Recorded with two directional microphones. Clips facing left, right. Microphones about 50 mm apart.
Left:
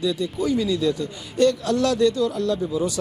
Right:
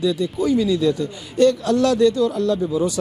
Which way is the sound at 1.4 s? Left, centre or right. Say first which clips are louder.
Right 3 dB; right.